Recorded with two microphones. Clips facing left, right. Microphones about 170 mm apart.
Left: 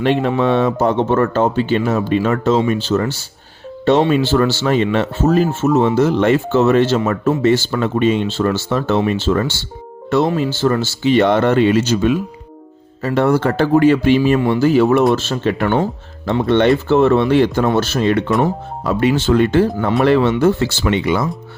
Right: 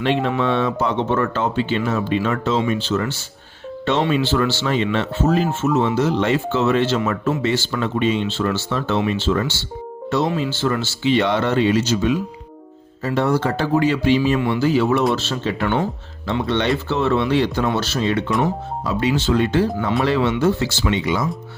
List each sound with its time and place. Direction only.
0.0 s speech: 45° left (ahead or behind)